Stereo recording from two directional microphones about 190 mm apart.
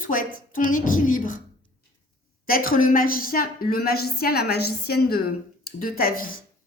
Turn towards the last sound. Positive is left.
turn(degrees=50)  # may be behind; listen again after turning